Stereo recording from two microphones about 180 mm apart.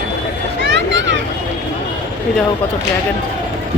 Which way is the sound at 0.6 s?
75° right (ahead or behind).